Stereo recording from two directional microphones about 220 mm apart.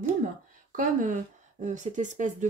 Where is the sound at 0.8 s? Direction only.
35° right (ahead or behind).